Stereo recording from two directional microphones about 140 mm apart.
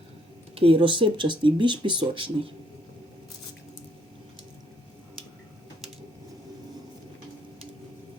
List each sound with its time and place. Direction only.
0.5 s speech: 40° right (ahead or behind)